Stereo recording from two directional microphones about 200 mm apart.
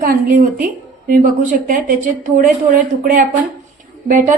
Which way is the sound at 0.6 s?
40° right (ahead or behind).